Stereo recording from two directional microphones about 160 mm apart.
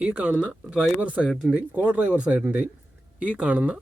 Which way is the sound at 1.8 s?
10° right (ahead or behind).